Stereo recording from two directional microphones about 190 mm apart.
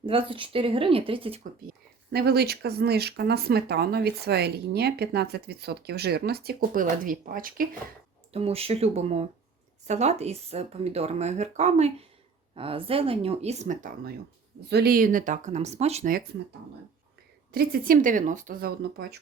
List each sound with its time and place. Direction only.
0.0 s speech: 25° right (ahead or behind)
2.1 s speech: 55° right (ahead or behind)
8.3 s speech: 30° right (ahead or behind)
14.7 s speech: 55° right (ahead or behind); by 16.1 s 35° right (ahead or behind)
17.5 s speech: 50° right (ahead or behind)